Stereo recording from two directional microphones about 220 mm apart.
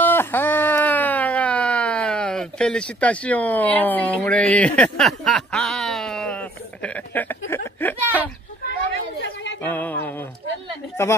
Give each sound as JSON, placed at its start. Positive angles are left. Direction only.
{"t": 0.0, "sound": "a sound", "side_deg": 10}
{"t": 8.8, "sound": "chatter", "side_deg": 55}
{"t": 9.6, "sound": "music", "side_deg": 5}
{"t": 11.0, "sound": "speech", "side_deg": 10}